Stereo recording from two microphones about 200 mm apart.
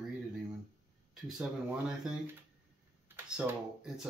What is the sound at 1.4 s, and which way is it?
Speech, 5° right (ahead or behind).